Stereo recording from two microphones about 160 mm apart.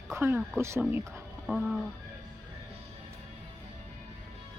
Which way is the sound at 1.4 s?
Centre (ahead or behind).